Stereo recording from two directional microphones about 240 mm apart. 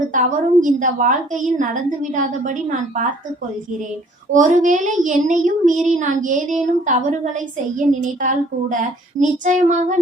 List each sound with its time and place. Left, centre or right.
0.1 s a woman's voice: right
4.3 s a woman's voice: right